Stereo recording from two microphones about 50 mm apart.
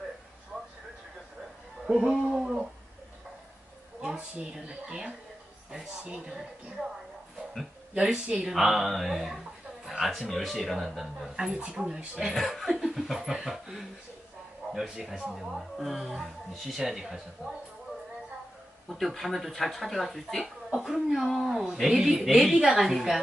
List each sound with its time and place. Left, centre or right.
1.9 s speech: centre
2.3 s speech: centre
4.5 s speech: centre
7.9 s speech: centre
12.3 s speech: centre
18.9 s speech: centre